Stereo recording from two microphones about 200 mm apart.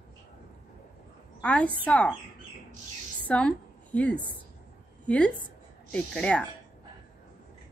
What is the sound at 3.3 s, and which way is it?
A woman's voice, 5° left (ahead or behind).